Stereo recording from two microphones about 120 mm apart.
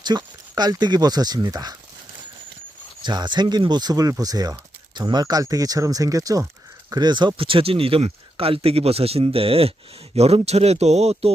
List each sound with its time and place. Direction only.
0.0 s speech: 35° right (ahead or behind)
3.0 s speech: 40° right (ahead or behind); by 11.3 s 60° right (ahead or behind)